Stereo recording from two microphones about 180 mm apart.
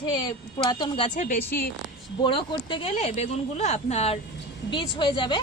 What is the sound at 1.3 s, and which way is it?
Speech, 55° left (ahead or behind).